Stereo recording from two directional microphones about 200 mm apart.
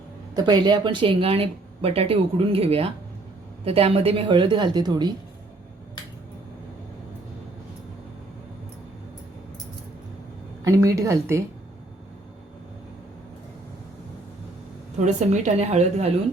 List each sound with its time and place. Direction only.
0.3 s speech: 20° right (ahead or behind)
10.6 s a woman's voice: 15° right (ahead or behind)
15.0 s a woman's voice: 35° right (ahead or behind)